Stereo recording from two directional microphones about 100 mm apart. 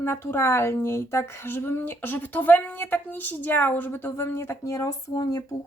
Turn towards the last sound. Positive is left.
turn(degrees=35)  # may be behind; listen again after turning